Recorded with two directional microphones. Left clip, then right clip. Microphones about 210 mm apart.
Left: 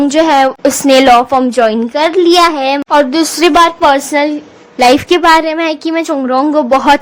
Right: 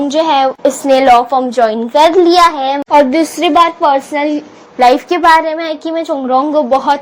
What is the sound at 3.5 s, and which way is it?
Speech, 20° left (ahead or behind).